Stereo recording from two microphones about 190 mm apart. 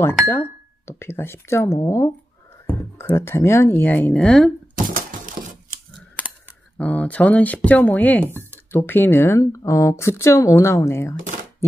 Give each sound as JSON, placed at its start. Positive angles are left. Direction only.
{"t": 0.0, "sound": "speech", "side_deg": 10}
{"t": 4.8, "sound": "typewriter", "side_deg": -45}
{"t": 6.2, "sound": "a sound", "side_deg": 5}
{"t": 6.8, "sound": "speech", "side_deg": 10}
{"t": 8.3, "sound": "a sound", "side_deg": -10}
{"t": 8.7, "sound": "speech", "side_deg": 10}